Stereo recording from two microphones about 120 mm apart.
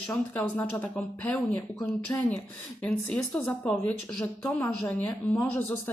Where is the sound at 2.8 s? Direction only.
10° left (ahead or behind).